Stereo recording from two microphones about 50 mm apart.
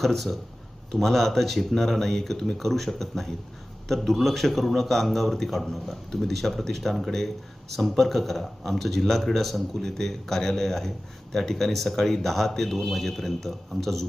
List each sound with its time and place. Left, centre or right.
0.0 s speech: centre